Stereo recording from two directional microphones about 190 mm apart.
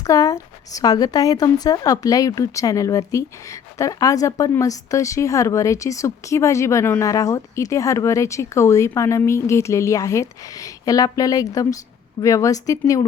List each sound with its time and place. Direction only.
0.0 s a woman's voice: 20° left (ahead or behind)